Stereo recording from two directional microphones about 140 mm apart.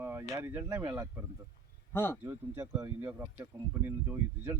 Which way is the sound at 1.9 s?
15° left (ahead or behind).